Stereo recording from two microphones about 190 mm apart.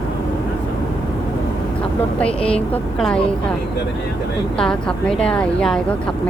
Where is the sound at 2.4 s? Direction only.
30° left (ahead or behind).